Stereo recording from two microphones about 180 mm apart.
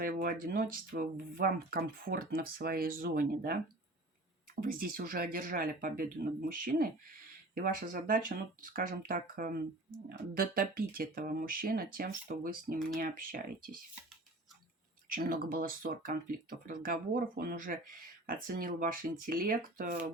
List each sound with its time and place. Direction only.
0.0 s speech: 55° right (ahead or behind)
4.6 s speech: 50° right (ahead or behind)
15.1 s speech: 50° right (ahead or behind)